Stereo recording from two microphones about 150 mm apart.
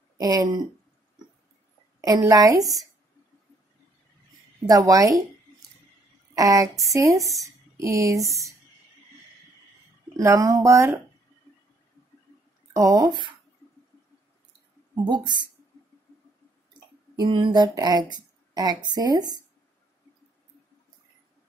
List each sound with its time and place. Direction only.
0.2 s speech: 25° right (ahead or behind)
2.0 s speech: 25° right (ahead or behind)
4.6 s speech: 25° right (ahead or behind)
6.3 s speech: 20° right (ahead or behind)
10.1 s speech: 20° right (ahead or behind)
12.7 s speech: 25° right (ahead or behind)
15.0 s speech: 30° right (ahead or behind)
17.1 s speech: 30° right (ahead or behind)